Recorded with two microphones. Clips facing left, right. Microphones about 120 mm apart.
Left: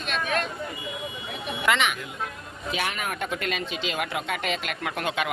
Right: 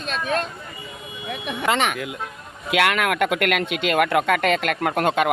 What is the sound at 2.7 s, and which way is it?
Speech, 75° right (ahead or behind).